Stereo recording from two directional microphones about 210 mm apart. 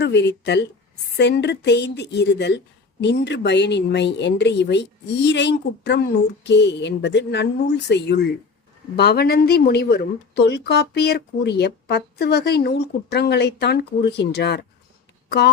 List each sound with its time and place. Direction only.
0.0 s a woman's voice: 55° left (ahead or behind)